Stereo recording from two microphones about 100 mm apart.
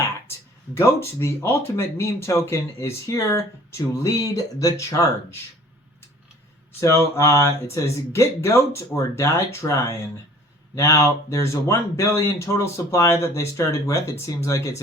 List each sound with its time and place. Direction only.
0.3 s speech: 25° left (ahead or behind)
6.7 s speech: 25° left (ahead or behind)